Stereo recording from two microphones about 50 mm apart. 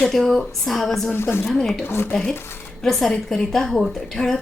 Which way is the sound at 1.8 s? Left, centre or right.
Left.